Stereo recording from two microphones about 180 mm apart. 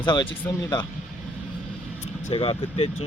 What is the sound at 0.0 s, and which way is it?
Speech, 25° left (ahead or behind).